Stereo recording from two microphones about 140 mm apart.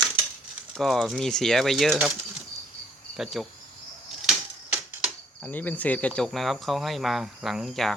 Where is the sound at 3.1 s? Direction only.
Centre (ahead or behind).